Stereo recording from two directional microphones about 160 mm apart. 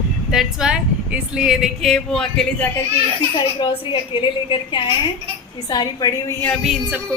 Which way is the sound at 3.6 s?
30° left (ahead or behind).